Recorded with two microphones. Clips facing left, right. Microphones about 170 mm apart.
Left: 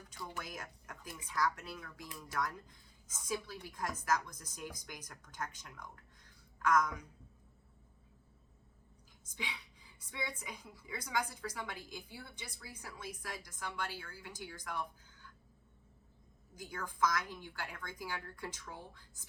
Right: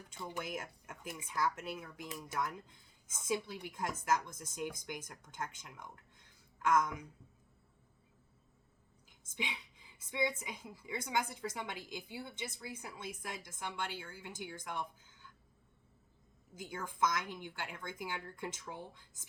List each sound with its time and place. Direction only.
0.1 s a woman's voice: 20° right (ahead or behind)
9.3 s a woman's voice: 20° right (ahead or behind)
16.6 s a woman's voice: 20° right (ahead or behind)